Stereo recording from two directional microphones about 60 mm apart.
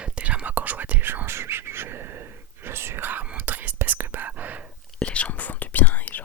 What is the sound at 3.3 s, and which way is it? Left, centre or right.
Whispering, right.